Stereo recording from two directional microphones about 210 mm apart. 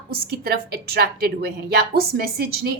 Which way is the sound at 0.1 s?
50° right (ahead or behind).